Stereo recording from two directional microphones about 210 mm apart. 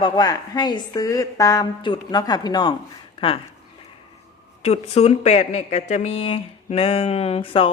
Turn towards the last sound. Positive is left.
turn(degrees=25)  # may be behind; listen again after turning